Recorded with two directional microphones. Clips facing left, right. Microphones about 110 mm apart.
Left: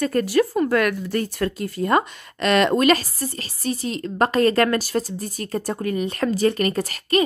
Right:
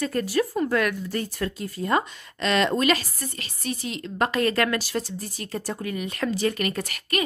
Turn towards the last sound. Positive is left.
turn(degrees=35)  # may be behind; listen again after turning